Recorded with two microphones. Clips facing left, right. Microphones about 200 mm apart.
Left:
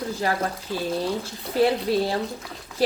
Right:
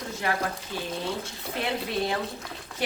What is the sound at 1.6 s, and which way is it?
Speech, 35° left (ahead or behind).